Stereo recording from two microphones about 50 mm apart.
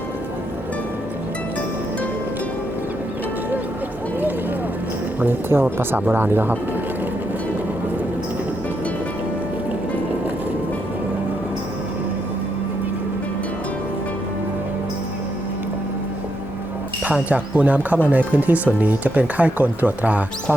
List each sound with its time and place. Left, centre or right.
5.2 s speech: right
17.2 s speech: right